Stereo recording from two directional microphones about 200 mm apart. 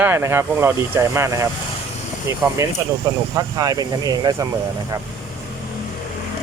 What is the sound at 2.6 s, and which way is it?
Speech, 15° right (ahead or behind).